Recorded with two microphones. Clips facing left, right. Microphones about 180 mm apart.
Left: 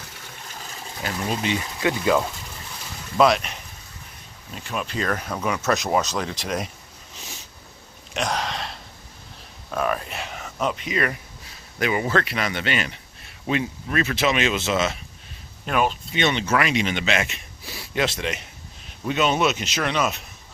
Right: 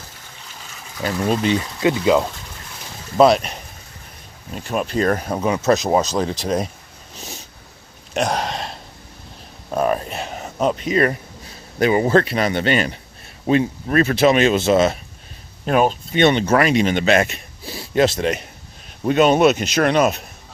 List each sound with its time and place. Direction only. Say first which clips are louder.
1.8 s speech: right 4 dB; 20° right (ahead or behind)
3.2 s speech: right 5 dB; 35° right (ahead or behind)
8.1 s a sound: right 5 dB; 50° right (ahead or behind)
9.7 s a man's voice: right 5 dB; 35° right (ahead or behind)